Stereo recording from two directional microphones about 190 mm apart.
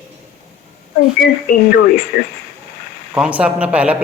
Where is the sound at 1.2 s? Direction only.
60° left (ahead or behind).